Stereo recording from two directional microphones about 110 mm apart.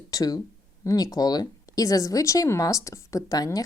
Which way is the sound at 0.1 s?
35° left (ahead or behind).